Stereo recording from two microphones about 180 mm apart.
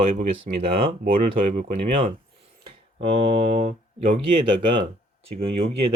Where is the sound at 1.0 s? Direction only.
50° right (ahead or behind).